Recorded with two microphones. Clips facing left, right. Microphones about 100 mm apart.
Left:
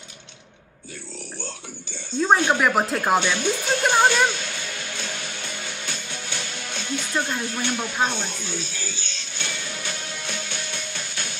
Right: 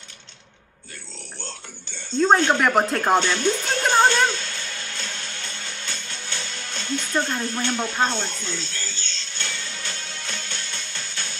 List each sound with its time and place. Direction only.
2.1 s music: 10° left (ahead or behind)